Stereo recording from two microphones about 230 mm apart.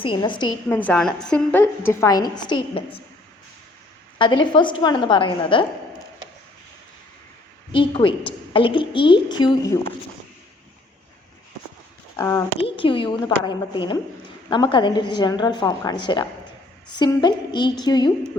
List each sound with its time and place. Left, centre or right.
0.0 s a woman's voice: left
0.8 s a woman's voice: centre; by 3.0 s left
4.2 s a woman's voice: centre
7.7 s a woman's voice: left
12.1 s speech: centre
12.5 s a woman's voice: left